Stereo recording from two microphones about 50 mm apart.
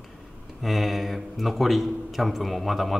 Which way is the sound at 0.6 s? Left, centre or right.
Centre.